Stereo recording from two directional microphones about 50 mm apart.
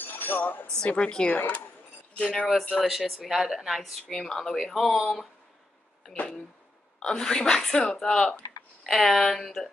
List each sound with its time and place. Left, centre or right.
0.0 s a sound: left
0.8 s a woman's voice: centre
2.7 s speech: centre
7.0 s speech: centre